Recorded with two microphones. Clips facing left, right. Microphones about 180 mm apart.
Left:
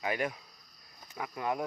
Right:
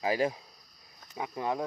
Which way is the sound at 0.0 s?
30° right (ahead or behind).